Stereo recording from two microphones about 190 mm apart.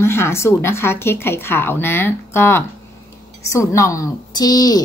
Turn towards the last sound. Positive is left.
turn(degrees=20)  # may be behind; listen again after turning